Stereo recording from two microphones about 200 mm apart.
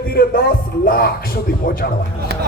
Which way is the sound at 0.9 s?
50° left (ahead or behind).